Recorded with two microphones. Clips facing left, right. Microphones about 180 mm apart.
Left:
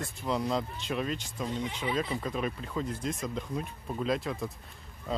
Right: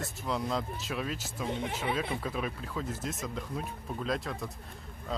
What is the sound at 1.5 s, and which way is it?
Speech, 55° right (ahead or behind).